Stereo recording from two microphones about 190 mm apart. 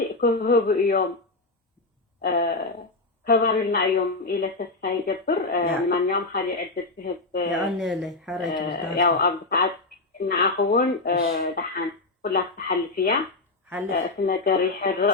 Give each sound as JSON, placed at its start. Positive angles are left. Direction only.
{"t": 0.2, "sound": "a woman's voice", "side_deg": 55}
{"t": 2.2, "sound": "a woman's voice", "side_deg": 50}
{"t": 7.7, "sound": "speech", "side_deg": 0}
{"t": 8.4, "sound": "a woman's voice", "side_deg": 55}